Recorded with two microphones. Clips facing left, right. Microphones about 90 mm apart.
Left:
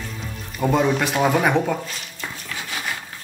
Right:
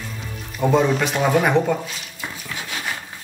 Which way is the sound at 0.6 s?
Centre (ahead or behind).